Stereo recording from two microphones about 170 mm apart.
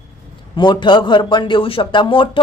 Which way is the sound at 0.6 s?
25° left (ahead or behind).